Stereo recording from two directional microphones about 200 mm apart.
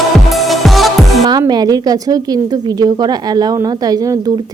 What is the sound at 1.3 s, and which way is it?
A woman's voice, 20° right (ahead or behind).